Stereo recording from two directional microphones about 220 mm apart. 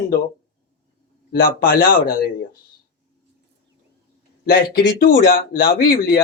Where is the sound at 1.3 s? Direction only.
40° left (ahead or behind).